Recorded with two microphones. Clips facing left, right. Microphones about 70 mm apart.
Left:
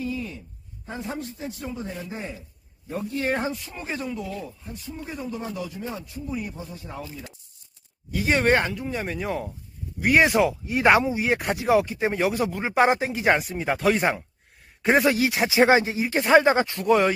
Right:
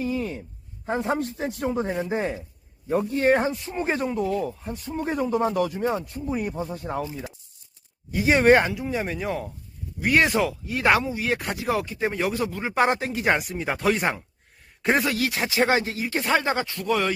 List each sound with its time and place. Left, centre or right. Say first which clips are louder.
0.0 s a sound: right 3 dB; right
0.9 s speech: right 7 dB; right
2.0 s chopping: right 8 dB; right
3.1 s speech: right 4 dB; right
3.8 s speech: right 5 dB; right
4.4 s speech: right 6 dB; right
5.0 s speech: right 10 dB; right
6.0 s speech: right 4 dB; right
8.1 s speech: right 4 dB; centre
15.0 s speech: left 4 dB; centre